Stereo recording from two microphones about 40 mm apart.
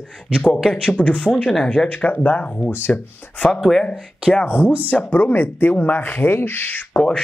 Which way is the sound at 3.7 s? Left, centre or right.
Left.